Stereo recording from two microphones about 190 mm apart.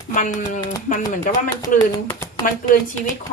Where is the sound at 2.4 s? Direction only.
45° left (ahead or behind).